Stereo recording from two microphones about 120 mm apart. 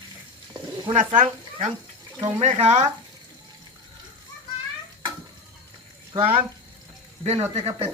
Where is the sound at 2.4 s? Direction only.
65° right (ahead or behind).